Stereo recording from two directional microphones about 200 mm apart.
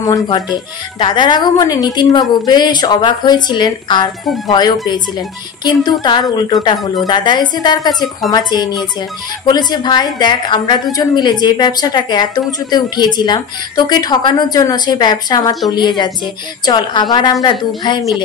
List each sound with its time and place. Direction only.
0.0 s a woman's voice: 20° left (ahead or behind)
5.9 s a woman's voice: 20° left (ahead or behind)